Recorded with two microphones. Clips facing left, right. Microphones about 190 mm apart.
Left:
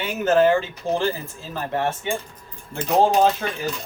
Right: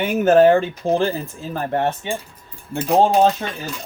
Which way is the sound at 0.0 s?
55° right (ahead or behind).